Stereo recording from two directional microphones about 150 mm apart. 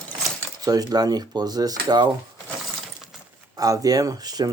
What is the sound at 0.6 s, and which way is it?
Speech, 25° right (ahead or behind).